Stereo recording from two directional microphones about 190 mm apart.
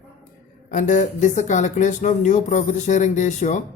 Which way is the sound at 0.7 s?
40° left (ahead or behind).